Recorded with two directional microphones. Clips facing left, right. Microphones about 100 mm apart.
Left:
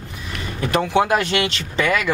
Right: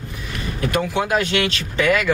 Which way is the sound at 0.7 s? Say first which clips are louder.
Left 3 dB; 30° left (ahead or behind).